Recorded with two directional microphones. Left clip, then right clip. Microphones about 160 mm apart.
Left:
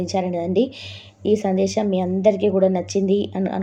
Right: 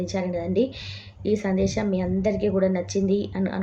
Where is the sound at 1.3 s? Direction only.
25° left (ahead or behind).